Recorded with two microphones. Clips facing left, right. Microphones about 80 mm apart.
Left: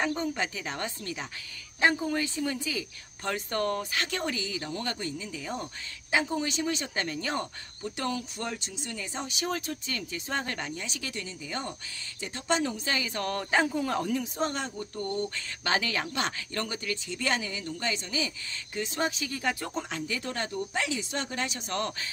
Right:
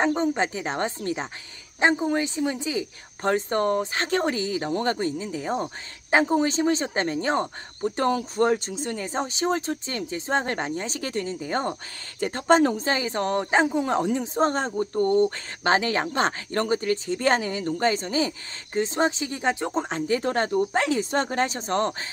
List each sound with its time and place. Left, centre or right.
0.0 s speech: right